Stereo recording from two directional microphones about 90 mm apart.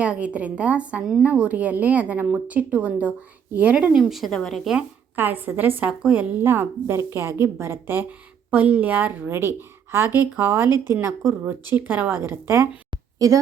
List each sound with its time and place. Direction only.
0.0 s speech: 15° right (ahead or behind)
4.0 s a woman's voice: centre (ahead or behind)
5.1 s a woman's voice: 20° right (ahead or behind)
13.1 s speech: 35° right (ahead or behind)